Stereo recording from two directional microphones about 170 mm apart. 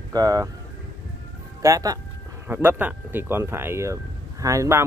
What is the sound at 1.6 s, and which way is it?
Speech, 20° right (ahead or behind).